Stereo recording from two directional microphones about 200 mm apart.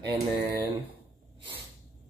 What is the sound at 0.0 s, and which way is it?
Speech, 20° right (ahead or behind).